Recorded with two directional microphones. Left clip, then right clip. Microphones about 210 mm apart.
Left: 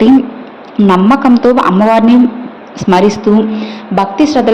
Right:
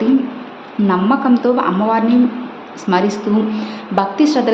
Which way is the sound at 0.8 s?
30° left (ahead or behind).